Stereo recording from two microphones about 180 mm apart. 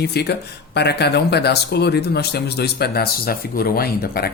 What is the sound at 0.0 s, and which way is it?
Speech, 65° left (ahead or behind).